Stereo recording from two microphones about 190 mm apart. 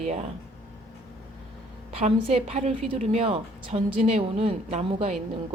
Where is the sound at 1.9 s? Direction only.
30° right (ahead or behind).